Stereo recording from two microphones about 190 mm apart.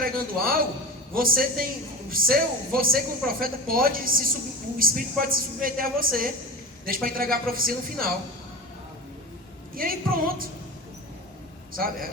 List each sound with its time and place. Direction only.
0.0 s a sound: 50° right (ahead or behind)
1.1 s speech: 50° right (ahead or behind)
9.7 s speech: 50° right (ahead or behind)
11.7 s speech: 50° right (ahead or behind)